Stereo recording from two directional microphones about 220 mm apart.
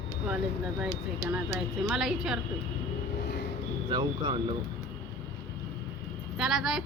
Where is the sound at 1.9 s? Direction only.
Centre (ahead or behind).